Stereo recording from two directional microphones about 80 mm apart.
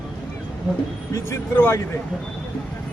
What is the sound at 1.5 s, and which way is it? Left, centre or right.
Speech, left.